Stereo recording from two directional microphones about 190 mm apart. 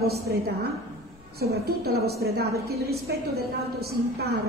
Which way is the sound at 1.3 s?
55° right (ahead or behind).